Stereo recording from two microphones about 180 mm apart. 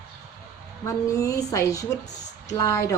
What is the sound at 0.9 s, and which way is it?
A woman's voice, 15° left (ahead or behind).